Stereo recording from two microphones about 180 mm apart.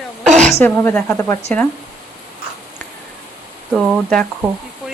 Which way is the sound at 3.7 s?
5° right (ahead or behind).